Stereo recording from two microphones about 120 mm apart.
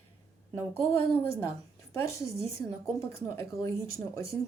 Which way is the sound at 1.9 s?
25° left (ahead or behind).